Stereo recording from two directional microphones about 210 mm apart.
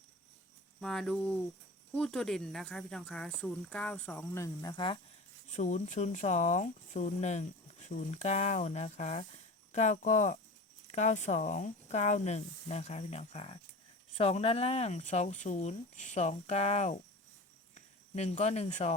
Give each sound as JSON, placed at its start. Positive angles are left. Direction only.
{"t": 0.8, "sound": "speech", "side_deg": 5}
{"t": 5.5, "sound": "speech", "side_deg": 35}